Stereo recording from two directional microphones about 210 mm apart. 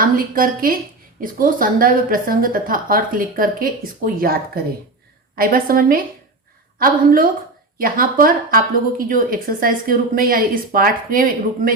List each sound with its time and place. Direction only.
0.0 s a woman's voice: 45° right (ahead or behind)